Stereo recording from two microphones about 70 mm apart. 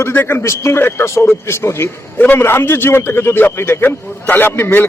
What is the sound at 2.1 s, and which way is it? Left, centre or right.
A man's voice, left.